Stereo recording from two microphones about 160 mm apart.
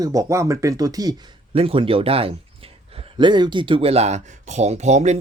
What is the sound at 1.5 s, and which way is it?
Speech, 35° right (ahead or behind).